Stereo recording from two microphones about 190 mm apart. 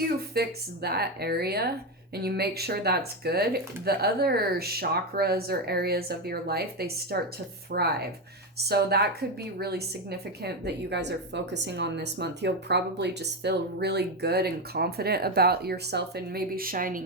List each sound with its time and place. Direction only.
0.3 s a woman's voice: 55° right (ahead or behind)